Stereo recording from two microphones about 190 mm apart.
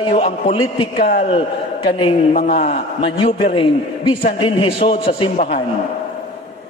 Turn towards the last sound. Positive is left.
turn(degrees=30)  # may be behind; listen again after turning